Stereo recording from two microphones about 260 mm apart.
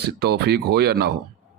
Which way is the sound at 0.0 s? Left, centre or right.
Right.